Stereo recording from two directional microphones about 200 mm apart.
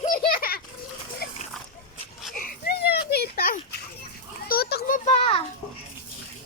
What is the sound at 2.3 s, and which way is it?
Children playing, 45° left (ahead or behind).